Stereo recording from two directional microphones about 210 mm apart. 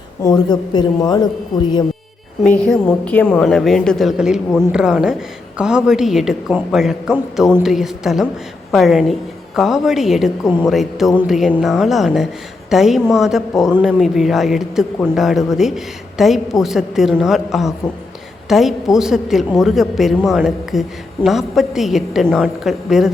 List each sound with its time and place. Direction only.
0.2 s speech: 15° left (ahead or behind)
2.5 s a woman's voice: 5° left (ahead or behind)